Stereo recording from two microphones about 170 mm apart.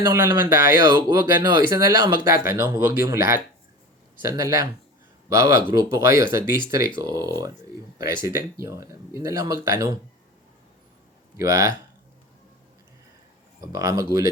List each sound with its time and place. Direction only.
0.0 s speech: 20° right (ahead or behind)
11.3 s speech: 20° right (ahead or behind)
13.6 s speech: 20° right (ahead or behind)